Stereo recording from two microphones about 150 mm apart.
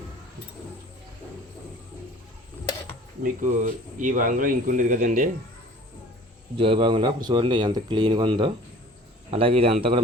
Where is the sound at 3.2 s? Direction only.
65° right (ahead or behind).